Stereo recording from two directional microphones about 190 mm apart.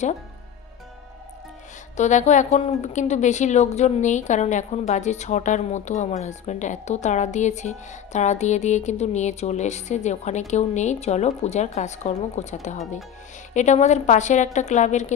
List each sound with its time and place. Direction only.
2.0 s a woman's voice: 40° left (ahead or behind)